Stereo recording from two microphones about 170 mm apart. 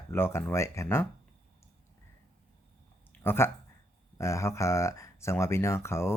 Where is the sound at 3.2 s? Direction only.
15° left (ahead or behind).